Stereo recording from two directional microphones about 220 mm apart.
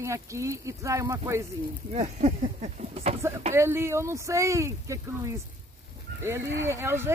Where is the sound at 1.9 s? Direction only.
30° right (ahead or behind).